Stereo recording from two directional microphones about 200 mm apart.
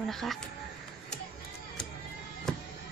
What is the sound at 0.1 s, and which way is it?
Speech, centre (ahead or behind).